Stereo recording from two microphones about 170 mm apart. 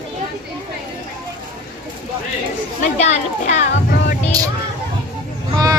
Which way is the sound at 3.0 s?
40° left (ahead or behind).